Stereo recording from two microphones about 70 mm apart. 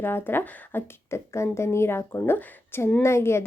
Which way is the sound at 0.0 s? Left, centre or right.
Left.